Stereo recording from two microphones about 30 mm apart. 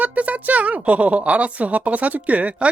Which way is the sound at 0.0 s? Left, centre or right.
Right.